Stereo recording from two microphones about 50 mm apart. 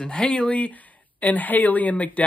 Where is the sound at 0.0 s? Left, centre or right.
Left.